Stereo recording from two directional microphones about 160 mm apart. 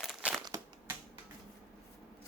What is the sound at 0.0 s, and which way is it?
Crumpling, centre (ahead or behind).